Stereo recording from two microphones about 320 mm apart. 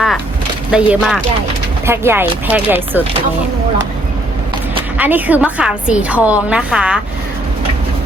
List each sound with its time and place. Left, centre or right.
0.7 s a woman's voice: centre
4.9 s a woman's voice: centre